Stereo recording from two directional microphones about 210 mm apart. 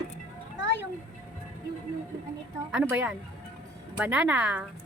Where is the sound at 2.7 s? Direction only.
5° right (ahead or behind).